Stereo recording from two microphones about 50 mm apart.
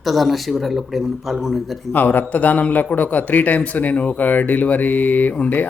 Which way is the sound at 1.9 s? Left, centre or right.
Left.